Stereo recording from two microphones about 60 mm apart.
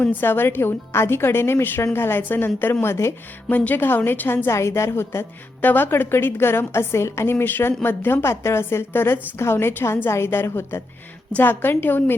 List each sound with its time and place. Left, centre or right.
0.2 s a woman's voice: left
2.8 s a woman's voice: left
3.5 s a woman's voice: left
4.4 s a woman's voice: left
5.6 s a woman's voice: left